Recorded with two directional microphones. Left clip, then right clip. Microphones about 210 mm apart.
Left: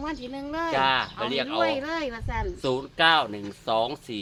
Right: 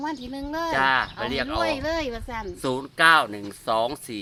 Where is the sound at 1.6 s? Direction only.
50° right (ahead or behind).